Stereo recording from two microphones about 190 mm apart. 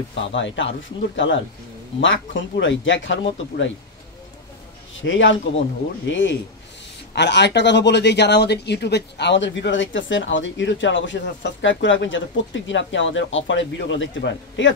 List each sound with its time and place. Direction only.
0.1 s speech: 70° left (ahead or behind)
4.9 s a man's voice: 80° left